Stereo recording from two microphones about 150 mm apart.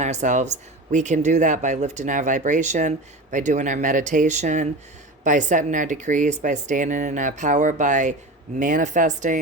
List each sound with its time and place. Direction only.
0.0 s speech: 50° right (ahead or behind)